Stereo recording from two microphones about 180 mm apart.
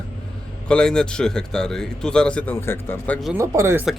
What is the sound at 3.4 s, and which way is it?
Speech, 15° right (ahead or behind).